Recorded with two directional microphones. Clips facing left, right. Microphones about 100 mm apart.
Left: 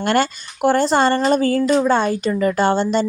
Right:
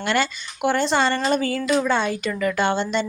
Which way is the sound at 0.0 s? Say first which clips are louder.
Left 5 dB; 45° left (ahead or behind).